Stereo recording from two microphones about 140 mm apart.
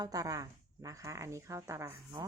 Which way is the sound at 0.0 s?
25° right (ahead or behind).